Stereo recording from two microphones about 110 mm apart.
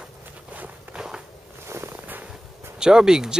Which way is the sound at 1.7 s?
25° right (ahead or behind).